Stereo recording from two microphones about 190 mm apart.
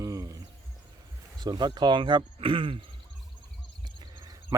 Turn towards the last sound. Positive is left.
turn(degrees=-20)  # may be behind; listen again after turning